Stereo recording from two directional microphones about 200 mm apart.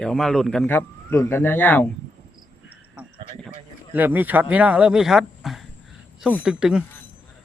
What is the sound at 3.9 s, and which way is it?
Speech, 10° right (ahead or behind).